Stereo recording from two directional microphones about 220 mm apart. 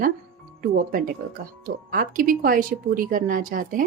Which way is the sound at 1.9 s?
40° right (ahead or behind).